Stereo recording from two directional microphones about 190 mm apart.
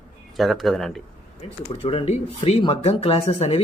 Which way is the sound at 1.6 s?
30° left (ahead or behind).